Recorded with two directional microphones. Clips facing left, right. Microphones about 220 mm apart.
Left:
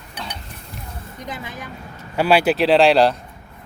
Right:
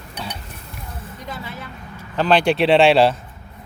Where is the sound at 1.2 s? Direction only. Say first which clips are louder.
Left 1 dB; 20° left (ahead or behind); by 3.2 s centre (ahead or behind).